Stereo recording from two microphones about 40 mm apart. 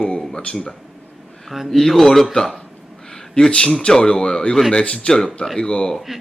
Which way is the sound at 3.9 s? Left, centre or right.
Centre.